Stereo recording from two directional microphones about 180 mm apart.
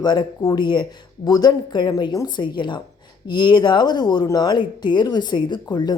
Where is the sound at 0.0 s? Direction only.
25° left (ahead or behind).